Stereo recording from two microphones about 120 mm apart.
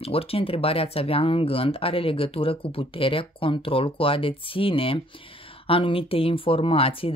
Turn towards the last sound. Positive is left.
turn(degrees=50)  # may be behind; listen again after turning